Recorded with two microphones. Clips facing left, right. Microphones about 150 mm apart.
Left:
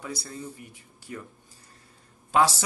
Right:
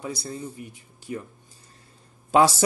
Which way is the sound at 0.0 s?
20° right (ahead or behind).